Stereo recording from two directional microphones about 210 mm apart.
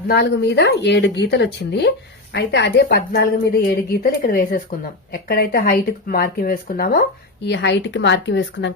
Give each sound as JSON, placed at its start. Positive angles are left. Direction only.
{"t": 0.1, "sound": "speech", "side_deg": 55}
{"t": 7.4, "sound": "a woman's voice", "side_deg": 55}